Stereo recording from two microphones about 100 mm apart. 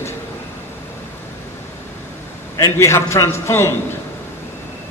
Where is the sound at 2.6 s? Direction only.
25° left (ahead or behind).